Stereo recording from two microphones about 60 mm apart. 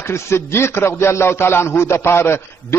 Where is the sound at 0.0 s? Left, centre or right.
Left.